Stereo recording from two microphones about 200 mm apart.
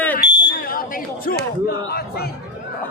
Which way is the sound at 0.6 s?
45° left (ahead or behind).